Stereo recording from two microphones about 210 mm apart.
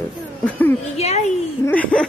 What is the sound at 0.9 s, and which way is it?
Speech, 30° left (ahead or behind).